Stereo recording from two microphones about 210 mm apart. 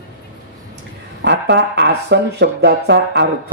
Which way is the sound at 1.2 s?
55° right (ahead or behind).